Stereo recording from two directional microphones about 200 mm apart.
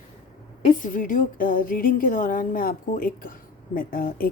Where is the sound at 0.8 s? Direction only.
40° left (ahead or behind).